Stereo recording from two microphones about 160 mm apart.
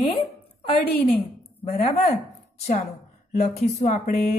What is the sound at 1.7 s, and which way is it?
Speech, 40° left (ahead or behind).